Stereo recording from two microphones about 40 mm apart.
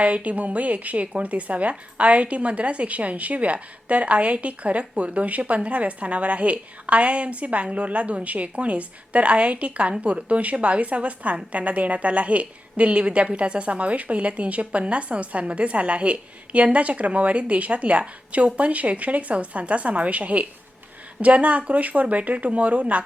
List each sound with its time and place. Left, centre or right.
0.0 s a woman's voice: right